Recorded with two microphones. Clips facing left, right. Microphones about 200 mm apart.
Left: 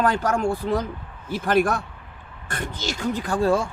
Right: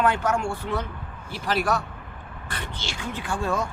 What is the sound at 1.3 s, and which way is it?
Speech, 50° left (ahead or behind).